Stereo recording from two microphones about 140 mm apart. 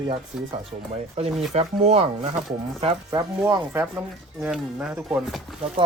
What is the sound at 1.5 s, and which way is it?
Speech, 50° right (ahead or behind).